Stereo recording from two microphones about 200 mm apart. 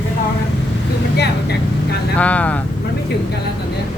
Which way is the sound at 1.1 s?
55° left (ahead or behind).